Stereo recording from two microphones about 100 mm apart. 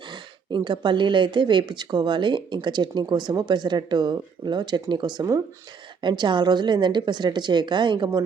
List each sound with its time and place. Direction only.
0.1 s speech: 50° right (ahead or behind)
6.0 s speech: 50° right (ahead or behind)